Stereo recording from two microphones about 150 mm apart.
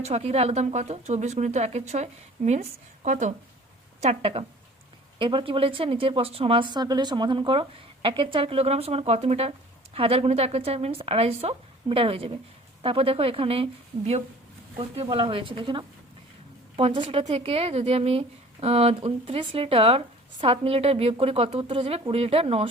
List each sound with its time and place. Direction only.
0.0 s speech: 45° right (ahead or behind)
4.0 s speech: 40° right (ahead or behind)